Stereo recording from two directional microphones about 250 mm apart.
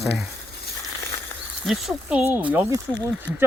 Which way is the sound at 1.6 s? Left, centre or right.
Centre.